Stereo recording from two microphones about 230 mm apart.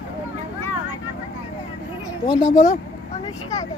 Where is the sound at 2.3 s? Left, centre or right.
Centre.